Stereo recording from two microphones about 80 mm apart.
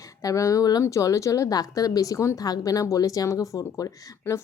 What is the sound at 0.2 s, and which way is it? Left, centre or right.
A woman's voice, left.